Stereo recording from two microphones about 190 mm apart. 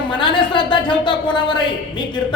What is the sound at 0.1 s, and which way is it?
Speech, 25° left (ahead or behind).